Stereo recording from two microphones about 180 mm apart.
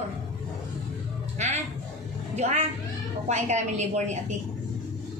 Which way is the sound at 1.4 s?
40° right (ahead or behind).